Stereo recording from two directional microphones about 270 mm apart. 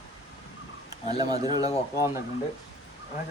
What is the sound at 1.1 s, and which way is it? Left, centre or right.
Speech, centre.